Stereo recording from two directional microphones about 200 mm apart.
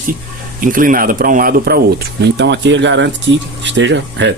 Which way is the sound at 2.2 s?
60° right (ahead or behind).